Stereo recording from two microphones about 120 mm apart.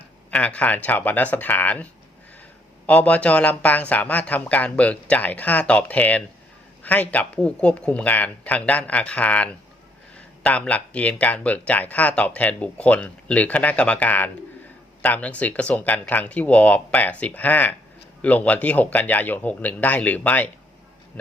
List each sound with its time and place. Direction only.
0.3 s speech: 10° left (ahead or behind)